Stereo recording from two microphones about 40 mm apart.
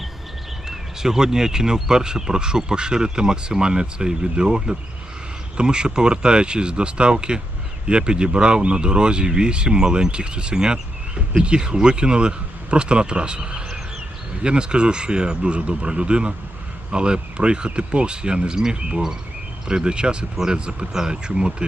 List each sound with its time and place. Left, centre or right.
0.7 s speech: centre